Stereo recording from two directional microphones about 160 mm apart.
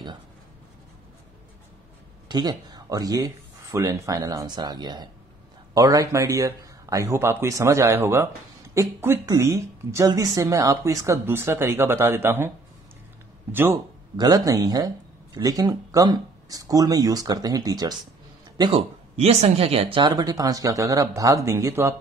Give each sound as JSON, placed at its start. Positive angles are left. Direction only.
{"t": 2.2, "sound": "speech", "side_deg": -25}
{"t": 14.1, "sound": "speech", "side_deg": -25}
{"t": 18.6, "sound": "speech", "side_deg": -35}